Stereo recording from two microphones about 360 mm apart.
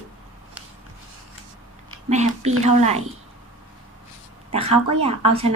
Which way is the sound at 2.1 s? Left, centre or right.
Centre.